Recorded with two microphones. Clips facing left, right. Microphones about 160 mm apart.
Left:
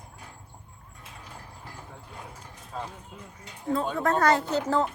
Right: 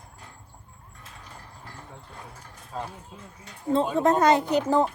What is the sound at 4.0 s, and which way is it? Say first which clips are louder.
Speech: right 3 dB; 20° right (ahead or behind).